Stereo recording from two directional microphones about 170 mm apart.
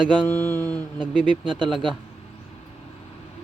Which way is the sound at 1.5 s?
30° right (ahead or behind).